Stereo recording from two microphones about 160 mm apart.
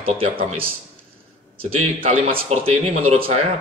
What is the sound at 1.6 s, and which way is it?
Speech, 35° right (ahead or behind).